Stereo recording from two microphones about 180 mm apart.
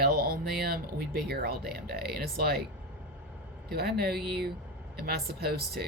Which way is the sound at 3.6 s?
60° right (ahead or behind).